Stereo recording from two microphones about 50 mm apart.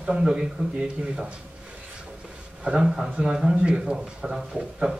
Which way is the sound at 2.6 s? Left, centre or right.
Centre.